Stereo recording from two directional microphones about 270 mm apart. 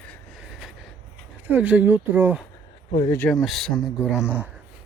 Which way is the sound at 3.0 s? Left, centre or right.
Centre.